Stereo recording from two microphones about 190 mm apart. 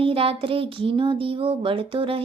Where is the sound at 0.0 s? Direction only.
30° right (ahead or behind).